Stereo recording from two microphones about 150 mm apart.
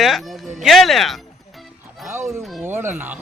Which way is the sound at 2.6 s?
15° right (ahead or behind).